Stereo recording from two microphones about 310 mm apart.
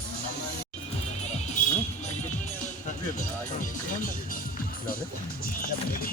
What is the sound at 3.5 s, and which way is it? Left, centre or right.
Music, left.